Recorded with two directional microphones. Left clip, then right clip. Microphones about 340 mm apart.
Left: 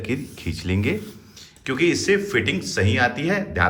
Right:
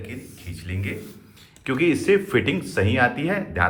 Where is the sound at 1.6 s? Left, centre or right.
Centre.